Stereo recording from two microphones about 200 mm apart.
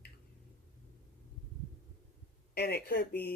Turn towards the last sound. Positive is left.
turn(degrees=50)  # may be behind; listen again after turning